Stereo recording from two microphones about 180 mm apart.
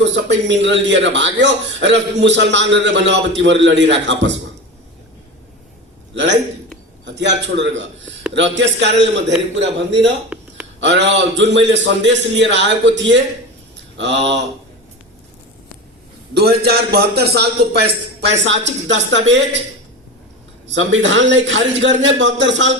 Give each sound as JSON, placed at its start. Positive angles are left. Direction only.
{"t": 0.0, "sound": "a man's voice", "side_deg": -80}
{"t": 6.1, "sound": "a man's voice", "side_deg": -80}
{"t": 9.6, "sound": "a man's voice", "side_deg": -90}
{"t": 10.3, "sound": "a sound", "side_deg": -5}
{"t": 10.8, "sound": "a man's voice", "side_deg": -80}
{"t": 16.3, "sound": "a man's voice", "side_deg": -60}
{"t": 20.7, "sound": "a man's voice", "side_deg": -90}